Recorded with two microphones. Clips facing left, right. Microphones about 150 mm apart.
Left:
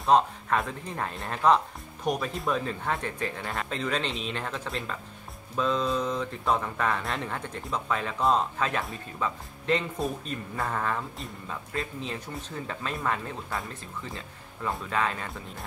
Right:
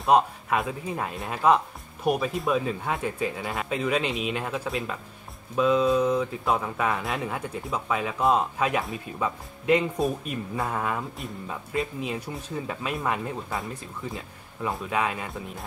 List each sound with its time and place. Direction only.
0.0 s speech: 5° right (ahead or behind)
14.1 s speech: 5° right (ahead or behind)